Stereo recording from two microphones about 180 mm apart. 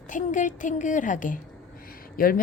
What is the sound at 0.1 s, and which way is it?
Speech, 45° left (ahead or behind).